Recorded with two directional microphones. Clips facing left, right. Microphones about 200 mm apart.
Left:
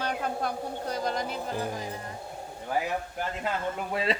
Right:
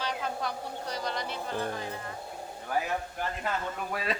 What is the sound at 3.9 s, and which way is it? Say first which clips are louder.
Speech: left 4 dB; 25° left (ahead or behind).